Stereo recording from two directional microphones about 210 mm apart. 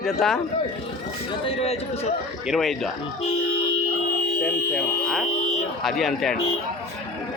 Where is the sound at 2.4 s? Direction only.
Centre (ahead or behind).